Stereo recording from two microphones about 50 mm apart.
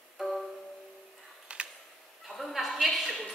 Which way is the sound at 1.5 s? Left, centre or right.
Right.